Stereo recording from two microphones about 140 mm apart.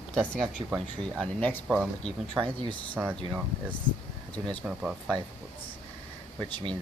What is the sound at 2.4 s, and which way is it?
Speech, 35° right (ahead or behind).